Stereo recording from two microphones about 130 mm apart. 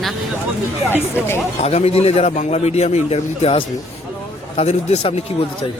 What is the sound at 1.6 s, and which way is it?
A man's voice, 50° left (ahead or behind).